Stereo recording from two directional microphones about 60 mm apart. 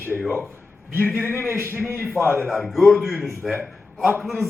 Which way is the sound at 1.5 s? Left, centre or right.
Right.